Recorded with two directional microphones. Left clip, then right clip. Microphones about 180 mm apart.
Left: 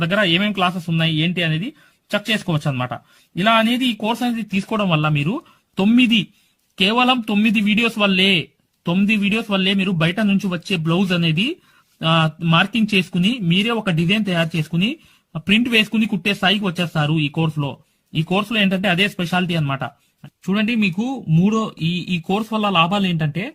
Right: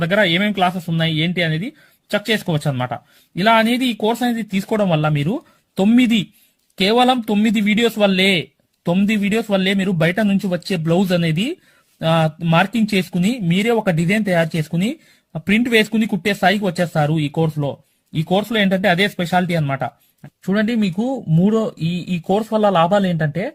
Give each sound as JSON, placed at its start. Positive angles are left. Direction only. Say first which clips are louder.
{"t": 0.0, "sound": "a man's voice", "louder": "right 2 dB", "side_deg": -20}
{"t": 12.9, "sound": "a man's voice", "louder": "left 1 dB", "side_deg": -15}
{"t": 20.5, "sound": "a man's voice", "louder": "right 1 dB", "side_deg": -25}
{"t": 21.8, "sound": "speech", "louder": "left 2 dB", "side_deg": -75}
{"t": 22.3, "sound": "a man's voice", "louder": "right 5 dB", "side_deg": -25}